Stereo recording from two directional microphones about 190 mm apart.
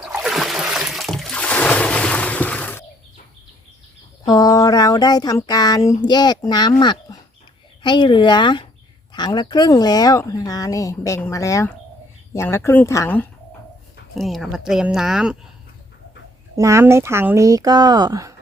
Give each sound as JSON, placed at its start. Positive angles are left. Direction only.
{"t": 0.0, "sound": "a sound", "side_deg": -5}
{"t": 4.3, "sound": "speech", "side_deg": 20}
{"t": 14.2, "sound": "speech", "side_deg": 0}
{"t": 16.6, "sound": "speech", "side_deg": -15}